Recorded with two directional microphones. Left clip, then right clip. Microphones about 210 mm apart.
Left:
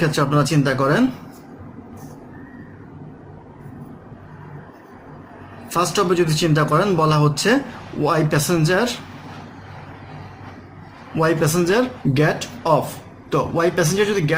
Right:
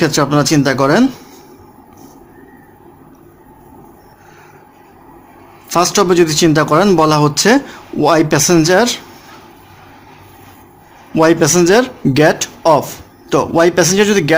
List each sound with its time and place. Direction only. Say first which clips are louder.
0.0 s speech: right 6 dB; 50° right (ahead or behind)
5.7 s speech: right 7 dB; 50° right (ahead or behind)
11.2 s speech: right 8 dB; 50° right (ahead or behind)